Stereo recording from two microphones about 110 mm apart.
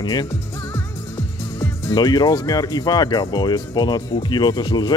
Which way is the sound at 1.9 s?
40° left (ahead or behind).